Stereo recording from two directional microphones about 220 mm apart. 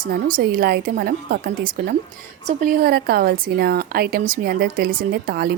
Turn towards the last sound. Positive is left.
turn(degrees=-45)  # may be behind; listen again after turning